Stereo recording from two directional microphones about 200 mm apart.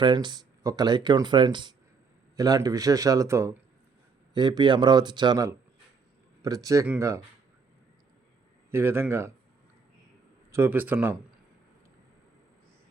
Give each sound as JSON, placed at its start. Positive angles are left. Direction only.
{"t": 0.0, "sound": "speech", "side_deg": -25}
{"t": 8.7, "sound": "speech", "side_deg": -10}
{"t": 10.5, "sound": "speech", "side_deg": -10}